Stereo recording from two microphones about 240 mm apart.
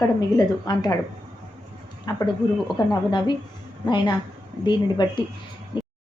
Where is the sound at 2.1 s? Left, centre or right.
Centre.